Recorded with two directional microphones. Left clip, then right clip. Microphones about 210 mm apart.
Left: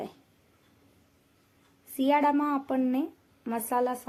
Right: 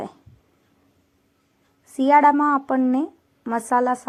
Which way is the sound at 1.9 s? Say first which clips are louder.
Right 10 dB; 20° right (ahead or behind).